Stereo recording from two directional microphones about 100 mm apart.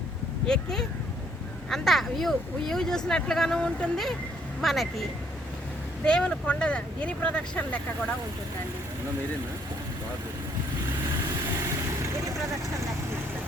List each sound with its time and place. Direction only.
0.4 s speech: 5° left (ahead or behind)
6.1 s speech: 10° left (ahead or behind)